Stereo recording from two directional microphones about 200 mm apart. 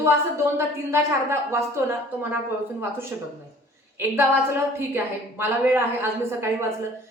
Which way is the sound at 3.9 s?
10° right (ahead or behind).